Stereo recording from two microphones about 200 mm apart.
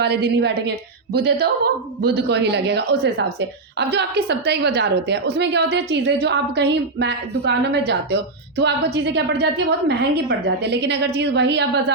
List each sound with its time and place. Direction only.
0.0 s a woman's voice: 55° right (ahead or behind)